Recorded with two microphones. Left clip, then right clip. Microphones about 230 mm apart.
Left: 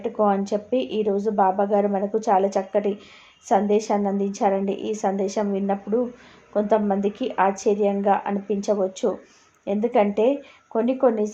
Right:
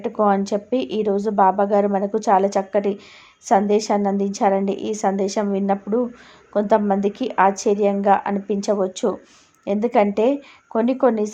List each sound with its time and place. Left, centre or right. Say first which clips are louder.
0.0 s a woman's voice: right 3 dB; right